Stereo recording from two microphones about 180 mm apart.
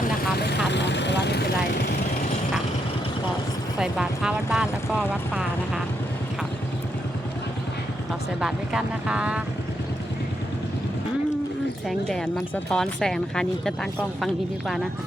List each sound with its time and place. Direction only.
0.0 s vehicle: 65° left (ahead or behind)
0.7 s vehicle: 80° left
3.8 s speech: 5° right (ahead or behind)
8.4 s speech: 5° right (ahead or behind)
11.9 s speech: 5° left (ahead or behind)